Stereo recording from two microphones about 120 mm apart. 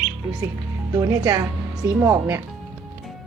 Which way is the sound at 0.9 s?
25° right (ahead or behind).